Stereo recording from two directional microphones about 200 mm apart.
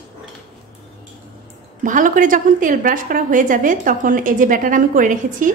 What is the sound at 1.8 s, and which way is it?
A woman's voice, 40° right (ahead or behind).